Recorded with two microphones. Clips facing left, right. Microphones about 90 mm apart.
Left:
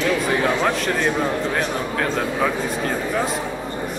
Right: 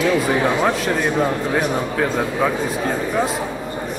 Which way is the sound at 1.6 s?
10° right (ahead or behind).